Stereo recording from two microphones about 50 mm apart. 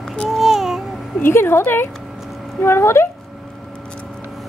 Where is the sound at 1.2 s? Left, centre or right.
Left.